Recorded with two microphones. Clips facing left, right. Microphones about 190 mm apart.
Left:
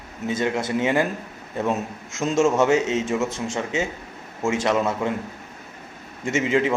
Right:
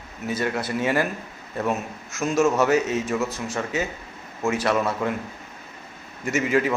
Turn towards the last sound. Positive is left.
turn(degrees=25)  # may be behind; listen again after turning